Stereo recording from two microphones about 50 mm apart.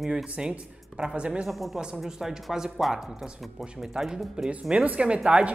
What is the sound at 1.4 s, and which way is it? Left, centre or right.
A woman's voice, centre.